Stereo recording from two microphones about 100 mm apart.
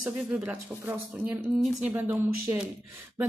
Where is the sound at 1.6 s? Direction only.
Centre (ahead or behind).